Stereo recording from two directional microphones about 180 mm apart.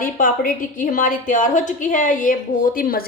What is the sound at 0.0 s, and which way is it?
A woman's voice, 50° left (ahead or behind).